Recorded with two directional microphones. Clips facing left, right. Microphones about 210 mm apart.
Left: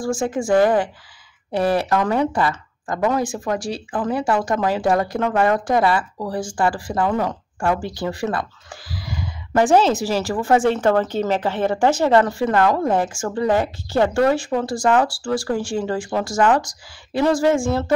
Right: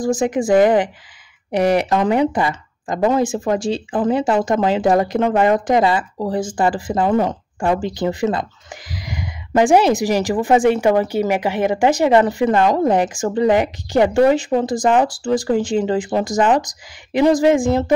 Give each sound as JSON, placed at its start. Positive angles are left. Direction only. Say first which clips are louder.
{"t": 0.0, "sound": "speech", "louder": "right 4 dB", "side_deg": -20}